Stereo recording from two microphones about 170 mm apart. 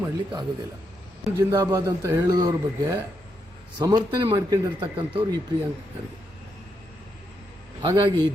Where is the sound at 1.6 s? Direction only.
20° right (ahead or behind).